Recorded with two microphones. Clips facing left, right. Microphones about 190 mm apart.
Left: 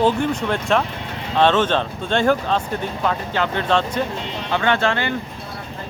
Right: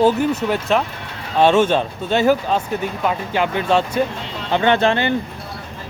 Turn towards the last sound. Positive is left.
turn(degrees=-20)  # may be behind; listen again after turning